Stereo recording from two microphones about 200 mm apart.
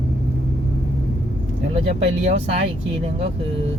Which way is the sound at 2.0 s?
30° right (ahead or behind).